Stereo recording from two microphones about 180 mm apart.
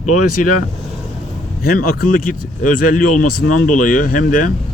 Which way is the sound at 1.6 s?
50° left (ahead or behind).